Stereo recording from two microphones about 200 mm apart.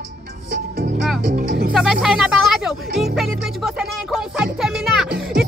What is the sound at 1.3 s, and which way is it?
Speech, 55° right (ahead or behind).